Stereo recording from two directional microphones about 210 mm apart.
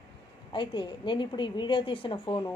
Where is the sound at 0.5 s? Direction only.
25° left (ahead or behind).